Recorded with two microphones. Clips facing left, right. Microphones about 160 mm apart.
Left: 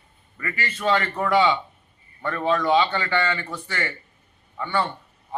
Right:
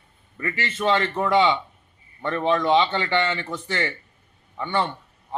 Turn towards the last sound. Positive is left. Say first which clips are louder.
# even
turn(degrees=-20)  # may be behind; listen again after turning